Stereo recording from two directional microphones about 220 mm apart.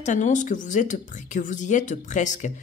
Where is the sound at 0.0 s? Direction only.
35° left (ahead or behind).